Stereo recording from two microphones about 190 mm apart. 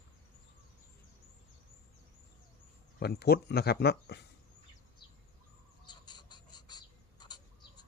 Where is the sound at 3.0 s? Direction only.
60° left (ahead or behind).